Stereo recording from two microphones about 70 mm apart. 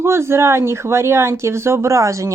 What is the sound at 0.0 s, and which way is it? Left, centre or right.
A man's voice, right.